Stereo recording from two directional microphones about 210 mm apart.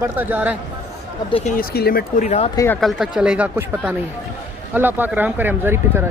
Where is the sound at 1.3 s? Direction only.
25° left (ahead or behind).